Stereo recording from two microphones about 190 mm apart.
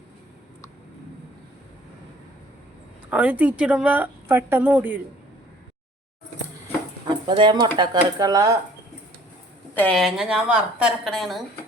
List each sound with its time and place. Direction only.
3.1 s speech: 5° right (ahead or behind)
7.0 s a sound: 25° right (ahead or behind)
7.8 s speech: 20° right (ahead or behind)
9.7 s a woman's voice: 5° left (ahead or behind)